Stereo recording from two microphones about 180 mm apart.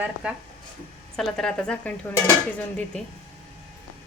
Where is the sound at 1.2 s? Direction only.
Centre (ahead or behind).